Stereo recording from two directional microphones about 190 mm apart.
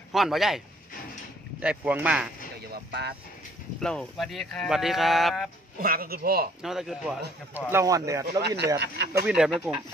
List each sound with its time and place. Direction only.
0.1 s speech: centre (ahead or behind)
1.6 s speech: 5° right (ahead or behind)
2.7 s speech: 60° right (ahead or behind)
3.8 s speech: 5° left (ahead or behind)
5.8 s a man's voice: 50° right (ahead or behind)
6.6 s speech: centre (ahead or behind)
7.7 s speech: 15° right (ahead or behind)
8.4 s speech: 60° right (ahead or behind)
9.2 s speech: 5° right (ahead or behind)